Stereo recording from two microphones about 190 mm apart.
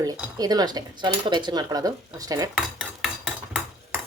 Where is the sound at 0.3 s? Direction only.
20° right (ahead or behind).